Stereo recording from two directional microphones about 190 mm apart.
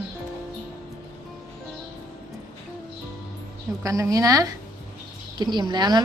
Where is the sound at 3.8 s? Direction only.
20° right (ahead or behind).